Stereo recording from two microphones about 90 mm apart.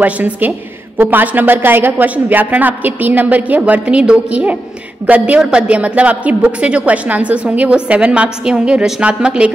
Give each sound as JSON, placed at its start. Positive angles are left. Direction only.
{"t": 0.0, "sound": "a woman's voice", "side_deg": -20}